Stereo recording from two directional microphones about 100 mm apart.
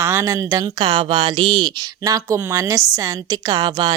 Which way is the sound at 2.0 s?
35° right (ahead or behind).